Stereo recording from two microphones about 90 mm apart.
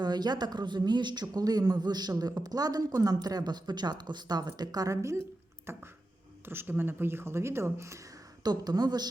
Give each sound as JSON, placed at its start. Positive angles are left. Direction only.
{"t": 0.0, "sound": "speech", "side_deg": -50}